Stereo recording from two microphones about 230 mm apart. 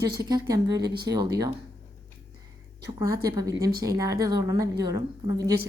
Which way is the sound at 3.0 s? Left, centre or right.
Centre.